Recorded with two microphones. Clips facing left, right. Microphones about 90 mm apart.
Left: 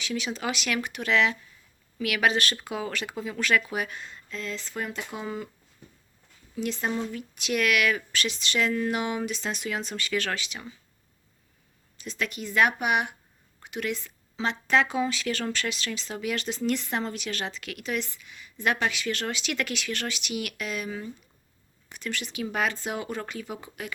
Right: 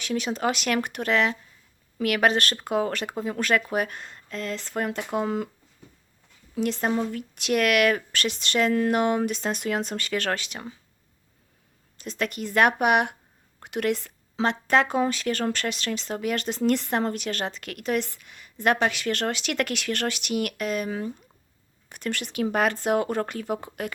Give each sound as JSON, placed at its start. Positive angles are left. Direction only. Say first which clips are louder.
{"t": 0.0, "sound": "speech", "louder": "right 5 dB", "side_deg": -45}
{"t": 6.6, "sound": "speech", "louder": "right 4 dB", "side_deg": -55}
{"t": 11.9, "sound": "speech", "louder": "right 3 dB", "side_deg": -50}